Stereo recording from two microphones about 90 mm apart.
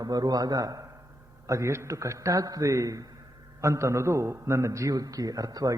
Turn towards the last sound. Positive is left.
turn(degrees=-45)  # may be behind; listen again after turning